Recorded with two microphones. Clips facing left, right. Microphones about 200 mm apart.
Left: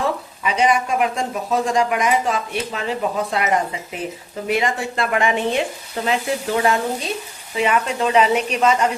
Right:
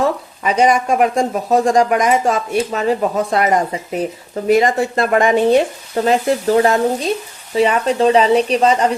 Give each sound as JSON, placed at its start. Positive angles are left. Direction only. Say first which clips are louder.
{"t": 0.4, "sound": "speech", "louder": "right 4 dB", "side_deg": -45}